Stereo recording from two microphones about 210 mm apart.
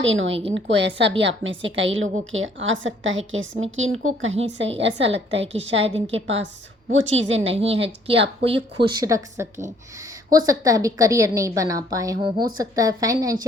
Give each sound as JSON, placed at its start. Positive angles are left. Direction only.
{"t": 0.0, "sound": "a woman's voice", "side_deg": -65}
{"t": 4.4, "sound": "a woman's voice", "side_deg": -55}
{"t": 5.8, "sound": "speech", "side_deg": -30}
{"t": 6.2, "sound": "a woman's voice", "side_deg": -65}
{"t": 7.5, "sound": "a woman's voice", "side_deg": -30}